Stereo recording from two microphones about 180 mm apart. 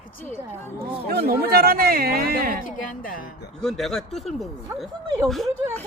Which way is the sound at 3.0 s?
50° left (ahead or behind).